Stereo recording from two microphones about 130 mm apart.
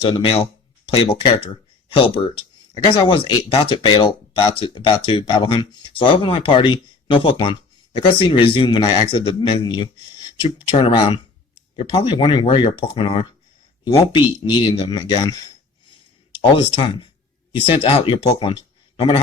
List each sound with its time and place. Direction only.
0.0 s speech: 40° left (ahead or behind)
10.7 s speech: 50° left (ahead or behind); by 15.5 s 25° left (ahead or behind)
16.4 s speech: 45° left (ahead or behind)